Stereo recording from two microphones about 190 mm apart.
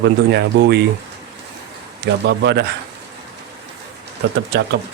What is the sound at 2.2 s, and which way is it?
Speech, 65° right (ahead or behind).